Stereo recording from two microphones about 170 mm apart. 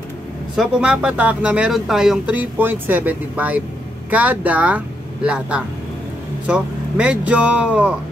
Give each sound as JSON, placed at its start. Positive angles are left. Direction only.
{"t": 0.6, "sound": "speech", "side_deg": -5}